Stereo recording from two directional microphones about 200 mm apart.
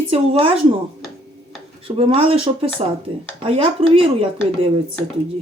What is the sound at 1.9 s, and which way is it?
Speech, 25° right (ahead or behind).